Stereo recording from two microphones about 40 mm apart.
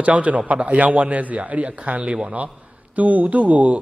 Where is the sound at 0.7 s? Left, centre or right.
Right.